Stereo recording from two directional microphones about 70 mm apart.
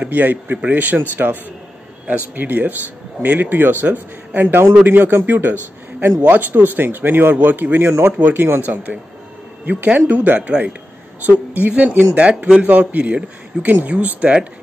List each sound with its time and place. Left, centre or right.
0.0 s a woman's voice: right